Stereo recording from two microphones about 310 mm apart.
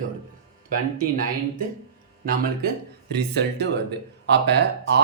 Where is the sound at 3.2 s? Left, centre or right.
Right.